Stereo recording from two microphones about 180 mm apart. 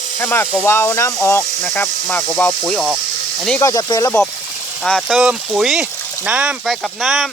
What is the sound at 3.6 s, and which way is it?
Speech, 20° left (ahead or behind).